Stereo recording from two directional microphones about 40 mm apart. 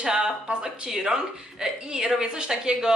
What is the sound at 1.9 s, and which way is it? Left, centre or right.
A woman's voice, centre.